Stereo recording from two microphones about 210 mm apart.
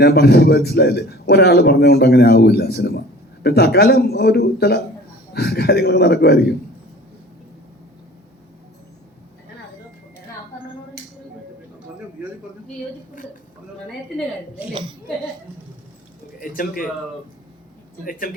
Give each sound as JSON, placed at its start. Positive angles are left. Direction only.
{"t": 0.0, "sound": "a man's voice", "side_deg": 50}
{"t": 14.7, "sound": "a woman's voice", "side_deg": -20}
{"t": 16.4, "sound": "a man's voice", "side_deg": 40}
{"t": 18.0, "sound": "a man's voice", "side_deg": 45}